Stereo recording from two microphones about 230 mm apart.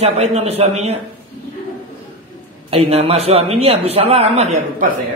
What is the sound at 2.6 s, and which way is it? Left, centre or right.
A woman's voice, right.